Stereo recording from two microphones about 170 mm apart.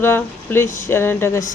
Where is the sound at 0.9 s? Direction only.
15° left (ahead or behind).